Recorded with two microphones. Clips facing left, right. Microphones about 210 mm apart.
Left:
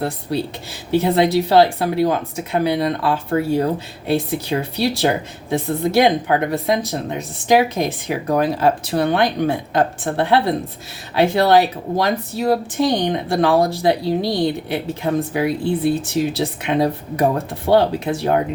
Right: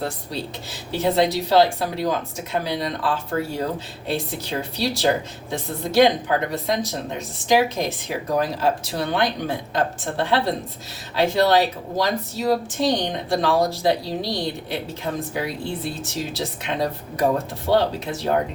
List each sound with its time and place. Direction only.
0.9 s speech: 60° left (ahead or behind)